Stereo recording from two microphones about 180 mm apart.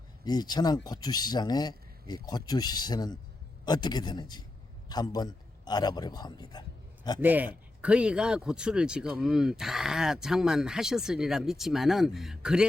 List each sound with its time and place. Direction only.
0.3 s a man's voice: 20° left (ahead or behind)
7.2 s speech: 10° right (ahead or behind)